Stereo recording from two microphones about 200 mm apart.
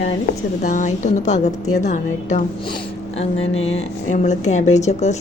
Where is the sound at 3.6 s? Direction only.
30° left (ahead or behind).